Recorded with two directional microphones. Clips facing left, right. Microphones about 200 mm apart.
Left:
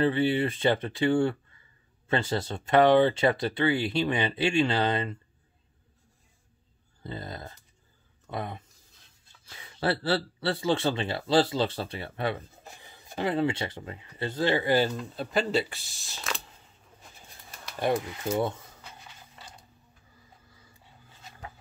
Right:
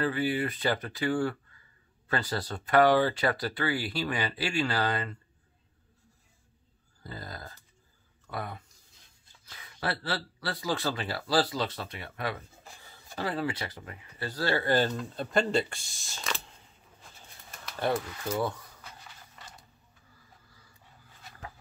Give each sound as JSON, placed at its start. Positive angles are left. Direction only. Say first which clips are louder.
{"t": 0.0, "sound": "speech", "louder": "left 4 dB", "side_deg": 25}
{"t": 7.0, "sound": "speech", "louder": "left 4 dB", "side_deg": 25}
{"t": 17.7, "sound": "speech", "louder": "left 2 dB", "side_deg": 15}